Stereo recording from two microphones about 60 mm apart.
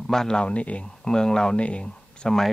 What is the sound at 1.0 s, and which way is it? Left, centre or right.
Speech, centre.